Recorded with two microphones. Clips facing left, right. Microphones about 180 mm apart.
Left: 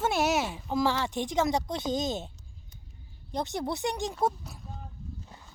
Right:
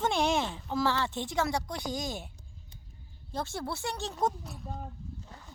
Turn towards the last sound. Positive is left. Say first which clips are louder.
# left 3 dB
turn(degrees=15)  # may be behind; listen again after turning